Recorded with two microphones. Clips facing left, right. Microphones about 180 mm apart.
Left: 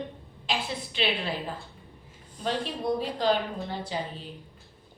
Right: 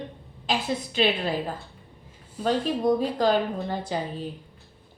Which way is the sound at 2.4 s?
45° right (ahead or behind).